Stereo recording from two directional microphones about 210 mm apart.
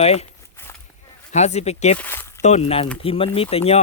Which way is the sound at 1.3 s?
30° left (ahead or behind).